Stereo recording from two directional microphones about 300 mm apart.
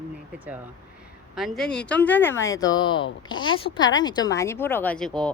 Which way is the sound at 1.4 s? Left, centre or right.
Centre.